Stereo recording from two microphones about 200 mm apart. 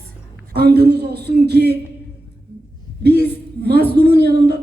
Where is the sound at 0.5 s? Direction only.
55° right (ahead or behind).